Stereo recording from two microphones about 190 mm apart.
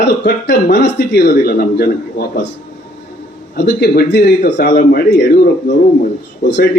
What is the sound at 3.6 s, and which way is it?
A man's voice, 55° left (ahead or behind).